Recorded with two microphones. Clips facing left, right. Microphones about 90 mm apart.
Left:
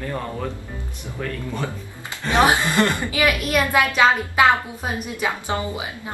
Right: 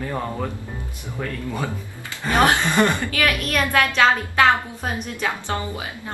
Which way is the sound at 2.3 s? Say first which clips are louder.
Even; 15° left (ahead or behind).